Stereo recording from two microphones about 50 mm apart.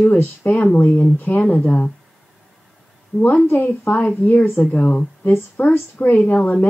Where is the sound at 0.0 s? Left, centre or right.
Left.